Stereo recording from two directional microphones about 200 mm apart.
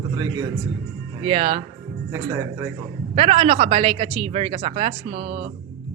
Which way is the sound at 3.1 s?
30° right (ahead or behind).